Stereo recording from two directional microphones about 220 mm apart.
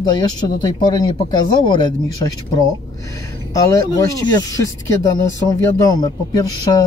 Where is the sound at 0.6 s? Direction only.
20° left (ahead or behind).